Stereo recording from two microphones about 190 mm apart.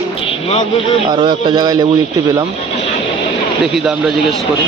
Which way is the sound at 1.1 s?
25° right (ahead or behind).